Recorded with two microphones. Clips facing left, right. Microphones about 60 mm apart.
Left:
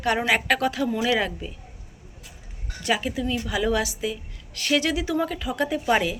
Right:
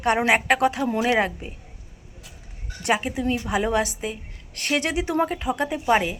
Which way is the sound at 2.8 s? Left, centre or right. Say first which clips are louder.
Right 2 dB; right.